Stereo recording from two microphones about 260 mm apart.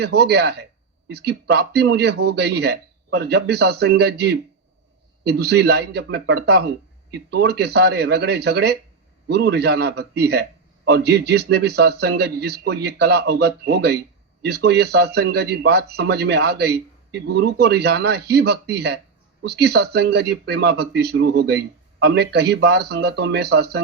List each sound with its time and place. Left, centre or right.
0.0 s speech: right